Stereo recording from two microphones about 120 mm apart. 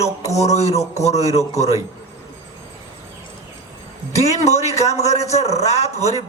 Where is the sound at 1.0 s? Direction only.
65° left (ahead or behind).